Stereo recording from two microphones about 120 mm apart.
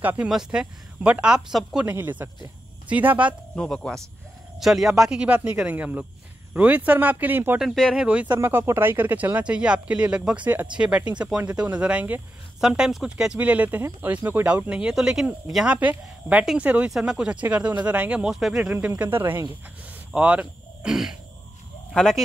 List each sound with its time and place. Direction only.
0.0 s speech: 15° right (ahead or behind)
0.3 s speech: 5° right (ahead or behind)
1.9 s speech: 15° right (ahead or behind)
3.5 s speech: 5° left (ahead or behind); by 7.6 s 15° right (ahead or behind)
7.6 s speech: 5° left (ahead or behind)
7.9 s speech: 10° right (ahead or behind)
8.4 s speech: 20° right (ahead or behind); by 18.7 s centre (ahead or behind)
18.7 s speech: 15° right (ahead or behind); by 22.2 s 5° left (ahead or behind)